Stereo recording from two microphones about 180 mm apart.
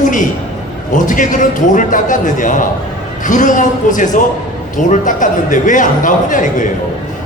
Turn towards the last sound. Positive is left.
turn(degrees=45)  # may be behind; listen again after turning